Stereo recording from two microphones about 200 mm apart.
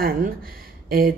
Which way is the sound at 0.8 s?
45° right (ahead or behind).